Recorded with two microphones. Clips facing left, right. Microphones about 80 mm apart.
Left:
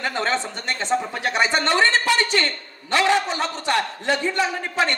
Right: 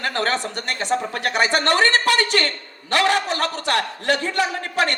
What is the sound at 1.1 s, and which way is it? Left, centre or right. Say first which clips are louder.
A man's voice: right 1 dB; right.